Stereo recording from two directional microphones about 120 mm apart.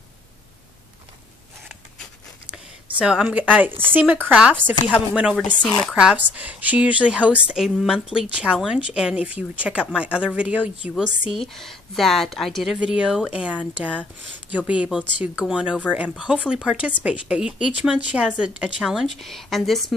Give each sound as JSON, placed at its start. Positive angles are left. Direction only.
{"t": 2.5, "sound": "a woman's voice", "side_deg": -5}
{"t": 5.6, "sound": "speech", "side_deg": 5}
{"t": 5.9, "sound": "a woman's voice", "side_deg": -10}
{"t": 11.3, "sound": "a woman's voice", "side_deg": 5}
{"t": 14.7, "sound": "a woman's voice", "side_deg": -10}